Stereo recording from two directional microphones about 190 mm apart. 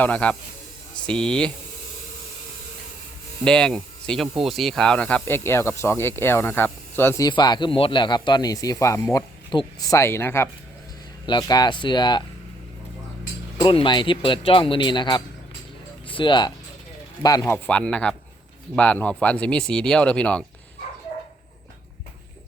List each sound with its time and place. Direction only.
0.0 s speech: 5° left (ahead or behind)
3.4 s speech: 5° left (ahead or behind)
11.3 s speech: 25° left (ahead or behind)
13.6 s speech: 25° left (ahead or behind); by 20.4 s 5° left (ahead or behind)